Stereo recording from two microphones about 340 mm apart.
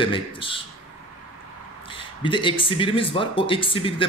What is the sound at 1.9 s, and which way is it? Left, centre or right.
Speech, centre.